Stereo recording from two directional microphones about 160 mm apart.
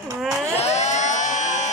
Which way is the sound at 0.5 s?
45° left (ahead or behind).